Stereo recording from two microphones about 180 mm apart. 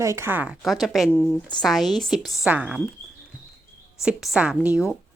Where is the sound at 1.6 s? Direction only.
Centre (ahead or behind).